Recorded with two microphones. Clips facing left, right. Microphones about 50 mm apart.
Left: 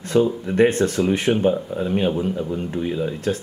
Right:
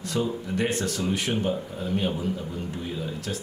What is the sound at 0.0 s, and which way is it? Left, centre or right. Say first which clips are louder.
Speech: left 9 dB; left.